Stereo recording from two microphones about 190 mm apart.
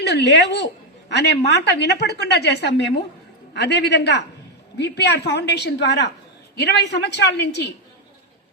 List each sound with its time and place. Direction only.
0.0 s a woman's voice: 65° left (ahead or behind)